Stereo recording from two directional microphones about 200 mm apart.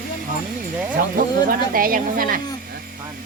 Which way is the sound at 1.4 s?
45° right (ahead or behind).